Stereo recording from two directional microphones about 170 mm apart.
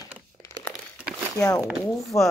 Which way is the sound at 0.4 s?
15° left (ahead or behind).